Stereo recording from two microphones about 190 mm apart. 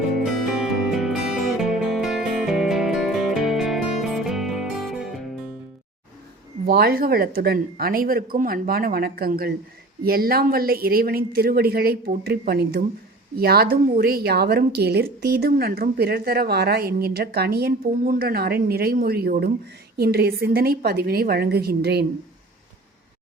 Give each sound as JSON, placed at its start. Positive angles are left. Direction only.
{"t": 0.3, "sound": "music", "side_deg": -5}
{"t": 6.7, "sound": "a woman's voice", "side_deg": -55}